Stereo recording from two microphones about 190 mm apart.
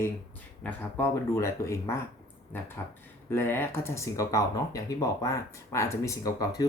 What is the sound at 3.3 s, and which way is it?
Speech, 10° left (ahead or behind).